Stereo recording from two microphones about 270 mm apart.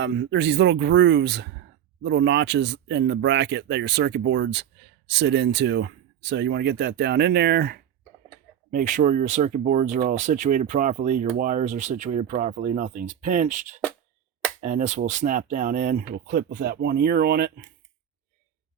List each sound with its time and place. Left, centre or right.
0.0 s speech: right